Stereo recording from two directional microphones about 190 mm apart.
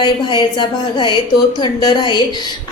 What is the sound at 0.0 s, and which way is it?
Speech, 25° left (ahead or behind).